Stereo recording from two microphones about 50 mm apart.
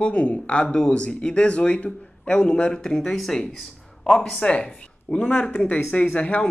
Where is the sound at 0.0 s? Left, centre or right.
Left.